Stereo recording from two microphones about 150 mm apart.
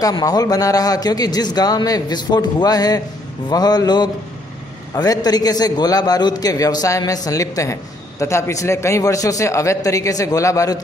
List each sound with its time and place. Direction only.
0.0 s a man's voice: 25° left (ahead or behind)